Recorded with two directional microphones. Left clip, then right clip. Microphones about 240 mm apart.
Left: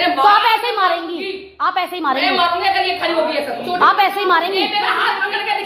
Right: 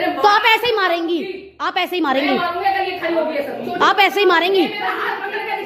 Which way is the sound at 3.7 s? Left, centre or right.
Right.